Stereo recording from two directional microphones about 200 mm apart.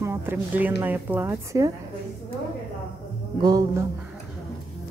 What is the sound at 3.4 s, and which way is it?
Speech, 20° right (ahead or behind).